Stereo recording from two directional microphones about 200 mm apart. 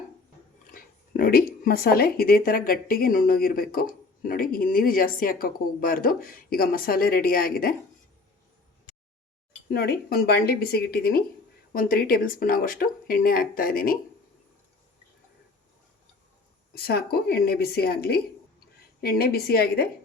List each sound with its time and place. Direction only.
0.7 s speech: 45° left (ahead or behind)
9.6 s speech: 50° left (ahead or behind)
16.7 s speech: 50° left (ahead or behind)